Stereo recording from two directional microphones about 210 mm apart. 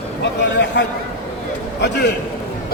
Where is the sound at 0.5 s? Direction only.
55° left (ahead or behind).